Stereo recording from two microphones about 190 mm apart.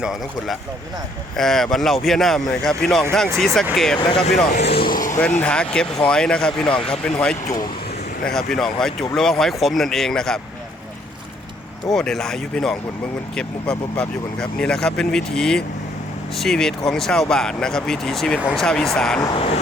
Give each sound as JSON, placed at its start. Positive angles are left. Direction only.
{"t": 0.0, "sound": "speech", "side_deg": 0}
{"t": 3.9, "sound": "speech", "side_deg": 25}
{"t": 4.4, "sound": "speech", "side_deg": 55}
{"t": 5.1, "sound": "speech", "side_deg": 10}
{"t": 11.9, "sound": "speech", "side_deg": 0}
{"t": 19.2, "sound": "speech", "side_deg": 25}